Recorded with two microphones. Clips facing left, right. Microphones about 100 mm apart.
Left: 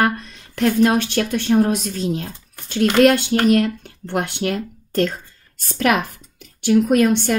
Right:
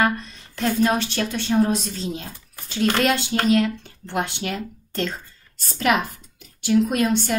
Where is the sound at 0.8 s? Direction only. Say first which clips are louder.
Left 4 dB; 55° left (ahead or behind).